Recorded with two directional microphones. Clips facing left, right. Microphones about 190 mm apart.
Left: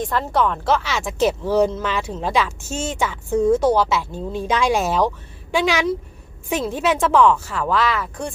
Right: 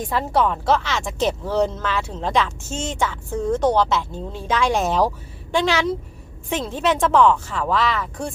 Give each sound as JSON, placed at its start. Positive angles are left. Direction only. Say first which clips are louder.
{"t": 0.1, "sound": "a woman's voice", "louder": "right 3 dB", "side_deg": -5}
{"t": 4.3, "sound": "a woman's voice", "louder": "left 2 dB", "side_deg": 15}